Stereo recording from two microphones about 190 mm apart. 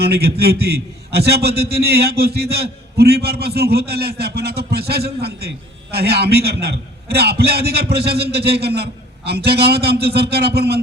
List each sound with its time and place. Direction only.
0.0 s a man's voice: 55° right (ahead or behind)